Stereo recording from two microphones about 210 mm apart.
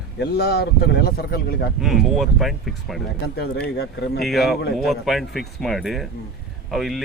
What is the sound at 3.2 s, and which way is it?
Speech, 50° left (ahead or behind).